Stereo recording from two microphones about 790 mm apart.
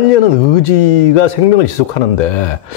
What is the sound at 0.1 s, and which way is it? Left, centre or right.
Speech, left.